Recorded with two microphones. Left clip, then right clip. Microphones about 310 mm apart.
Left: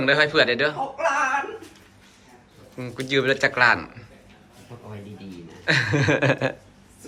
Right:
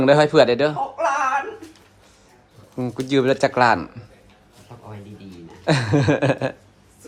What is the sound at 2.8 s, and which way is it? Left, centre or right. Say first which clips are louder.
A man's voice: right 3 dB; centre.